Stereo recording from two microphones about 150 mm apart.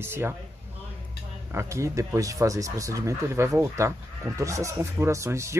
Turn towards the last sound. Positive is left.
turn(degrees=-20)  # may be behind; listen again after turning